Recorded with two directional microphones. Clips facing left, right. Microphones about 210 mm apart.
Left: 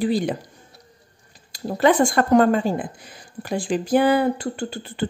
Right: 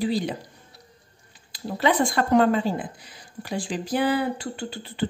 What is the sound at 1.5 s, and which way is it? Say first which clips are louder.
Speech: left 5 dB; 45° left (ahead or behind).